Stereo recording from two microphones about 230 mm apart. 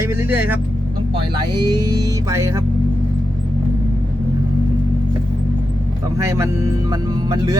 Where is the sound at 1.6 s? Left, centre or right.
Centre.